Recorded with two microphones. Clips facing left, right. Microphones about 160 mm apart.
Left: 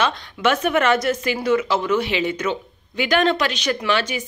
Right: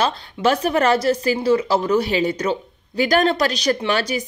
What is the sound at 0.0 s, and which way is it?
A woman's voice, 35° right (ahead or behind).